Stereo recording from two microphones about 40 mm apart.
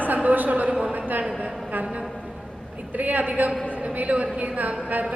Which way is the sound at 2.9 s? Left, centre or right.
Right.